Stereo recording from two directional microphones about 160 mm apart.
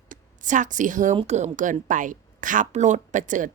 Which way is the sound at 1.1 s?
40° right (ahead or behind).